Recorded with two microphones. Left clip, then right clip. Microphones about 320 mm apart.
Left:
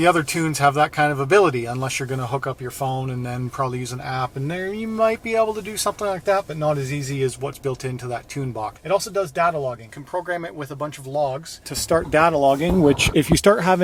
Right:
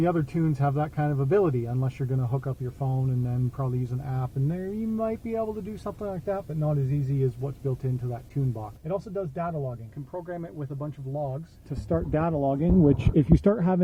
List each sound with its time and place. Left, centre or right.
0.0 s speech: centre
2.8 s speech: left
3.1 s speech: centre